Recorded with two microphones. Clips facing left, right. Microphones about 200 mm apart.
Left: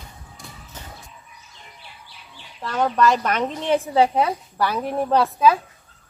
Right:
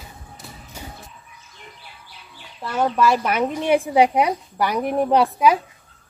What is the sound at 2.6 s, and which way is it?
A woman's voice, 10° right (ahead or behind).